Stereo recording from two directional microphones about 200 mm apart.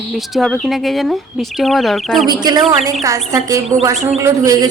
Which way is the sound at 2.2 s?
20° right (ahead or behind).